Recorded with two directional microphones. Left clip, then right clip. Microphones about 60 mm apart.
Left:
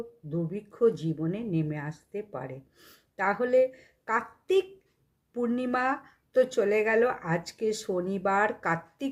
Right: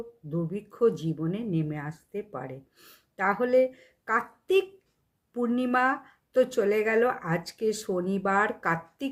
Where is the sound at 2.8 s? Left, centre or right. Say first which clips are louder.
Right 1 dB; right.